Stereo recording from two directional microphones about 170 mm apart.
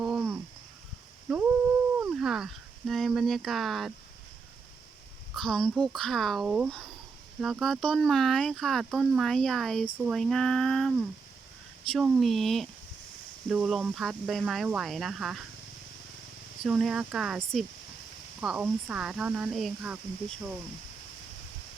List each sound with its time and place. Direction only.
0.0 s a sound: 10° right (ahead or behind)
1.3 s humming: 5° right (ahead or behind)
2.0 s speech: 5° right (ahead or behind)
5.3 s speech: 5° left (ahead or behind)
16.6 s speech: centre (ahead or behind)